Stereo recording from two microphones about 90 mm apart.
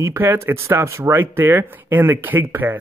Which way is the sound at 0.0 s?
25° right (ahead or behind).